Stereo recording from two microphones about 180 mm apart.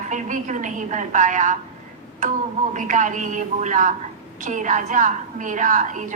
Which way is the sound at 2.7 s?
45° right (ahead or behind).